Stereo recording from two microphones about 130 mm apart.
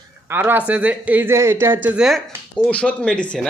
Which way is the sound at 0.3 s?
15° right (ahead or behind).